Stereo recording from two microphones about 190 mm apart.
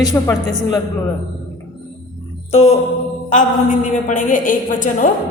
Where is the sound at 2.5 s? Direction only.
35° left (ahead or behind).